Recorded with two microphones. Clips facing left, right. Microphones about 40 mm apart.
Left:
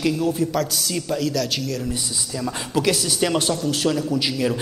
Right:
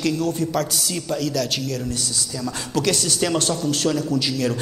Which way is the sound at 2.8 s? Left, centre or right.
Centre.